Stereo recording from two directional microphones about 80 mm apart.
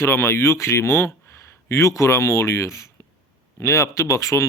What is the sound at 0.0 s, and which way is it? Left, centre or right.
Speech, left.